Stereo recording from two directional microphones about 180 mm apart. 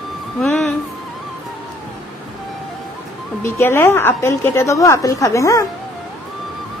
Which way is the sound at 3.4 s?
15° left (ahead or behind).